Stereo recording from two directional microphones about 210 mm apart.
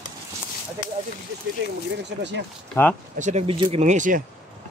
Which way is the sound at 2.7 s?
10° left (ahead or behind).